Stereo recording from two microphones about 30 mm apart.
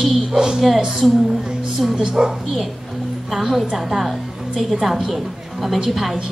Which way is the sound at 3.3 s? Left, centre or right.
Centre.